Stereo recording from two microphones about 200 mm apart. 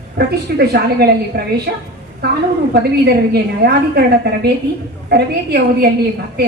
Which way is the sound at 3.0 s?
55° right (ahead or behind).